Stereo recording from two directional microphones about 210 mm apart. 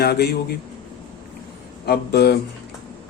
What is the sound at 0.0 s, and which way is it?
Speech, 50° left (ahead or behind).